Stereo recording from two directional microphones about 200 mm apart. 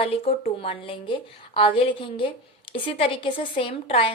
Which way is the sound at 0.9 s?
25° left (ahead or behind).